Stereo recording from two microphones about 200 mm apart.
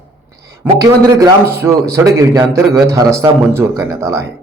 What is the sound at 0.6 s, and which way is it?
Speech, 15° right (ahead or behind).